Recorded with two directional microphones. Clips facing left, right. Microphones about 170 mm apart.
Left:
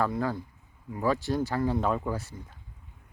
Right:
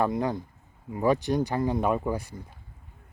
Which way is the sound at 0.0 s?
20° right (ahead or behind).